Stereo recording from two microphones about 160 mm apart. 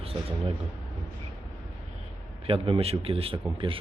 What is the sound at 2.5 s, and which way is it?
Speech, 35° right (ahead or behind).